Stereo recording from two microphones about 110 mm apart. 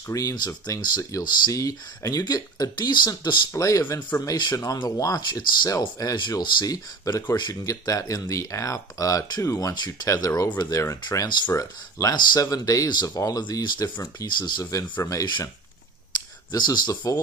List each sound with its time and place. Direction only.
0.1 s speech: 35° left (ahead or behind)
11.1 s speech: 40° left (ahead or behind)
11.5 s speech: 30° left (ahead or behind)
16.5 s speech: 40° left (ahead or behind)